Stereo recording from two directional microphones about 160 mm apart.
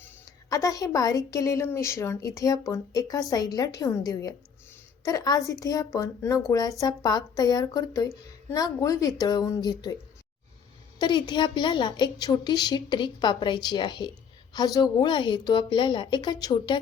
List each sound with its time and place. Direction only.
0.3 s a woman's voice: 20° left (ahead or behind)
11.0 s a woman's voice: 30° left (ahead or behind)